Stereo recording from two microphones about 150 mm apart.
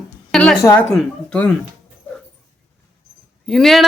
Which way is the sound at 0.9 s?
5° left (ahead or behind).